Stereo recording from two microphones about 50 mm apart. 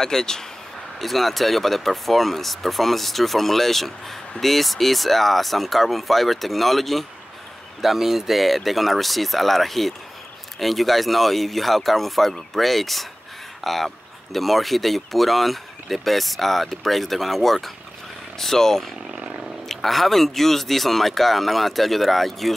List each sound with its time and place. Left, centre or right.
0.0 s speech: centre
19.1 s a sound: centre
19.4 s speech: centre